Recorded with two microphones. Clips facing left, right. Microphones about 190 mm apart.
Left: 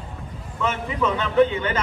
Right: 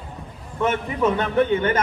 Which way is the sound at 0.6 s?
50° right (ahead or behind).